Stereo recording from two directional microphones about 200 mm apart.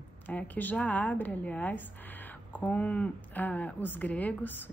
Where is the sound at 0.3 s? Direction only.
10° left (ahead or behind).